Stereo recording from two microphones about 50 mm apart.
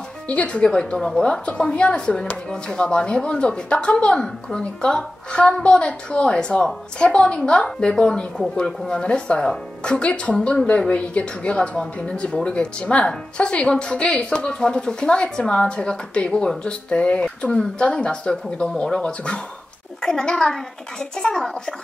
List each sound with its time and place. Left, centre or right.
0.3 s a child's voice: left